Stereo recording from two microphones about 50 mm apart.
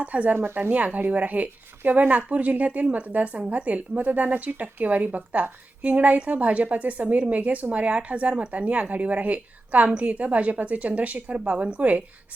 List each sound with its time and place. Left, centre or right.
0.0 s speech: right
0.3 s speech: right
0.7 s speech: right